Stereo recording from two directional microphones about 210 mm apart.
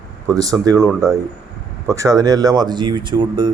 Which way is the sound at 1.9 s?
15° right (ahead or behind).